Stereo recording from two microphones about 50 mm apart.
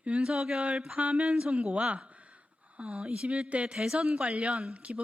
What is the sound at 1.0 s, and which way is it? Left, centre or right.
A woman's voice, right.